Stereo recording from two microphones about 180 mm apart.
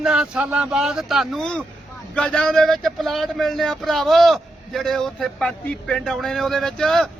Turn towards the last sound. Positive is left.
turn(degrees=0)  # may be behind; listen again after turning